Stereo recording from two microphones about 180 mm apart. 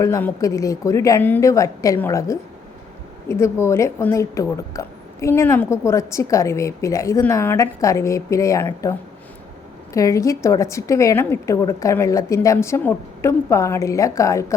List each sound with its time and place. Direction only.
0.0 s a woman's voice: 15° left (ahead or behind)